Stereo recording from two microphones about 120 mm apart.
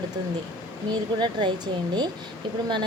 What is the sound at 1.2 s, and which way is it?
Speech, 40° right (ahead or behind).